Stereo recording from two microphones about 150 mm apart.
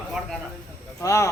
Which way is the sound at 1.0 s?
20° left (ahead or behind).